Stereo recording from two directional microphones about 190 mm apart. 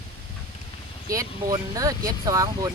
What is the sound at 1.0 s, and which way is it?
Speech, 15° right (ahead or behind).